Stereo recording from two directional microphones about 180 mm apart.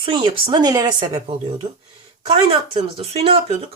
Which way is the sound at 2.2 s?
30° right (ahead or behind).